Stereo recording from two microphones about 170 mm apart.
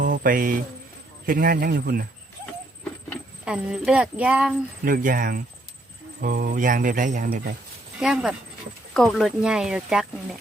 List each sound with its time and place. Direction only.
0.1 s a man's voice: 55° right (ahead or behind)
3.4 s speech: 5° right (ahead or behind)
4.9 s a man's voice: 55° right (ahead or behind)
7.9 s speech: 5° right (ahead or behind)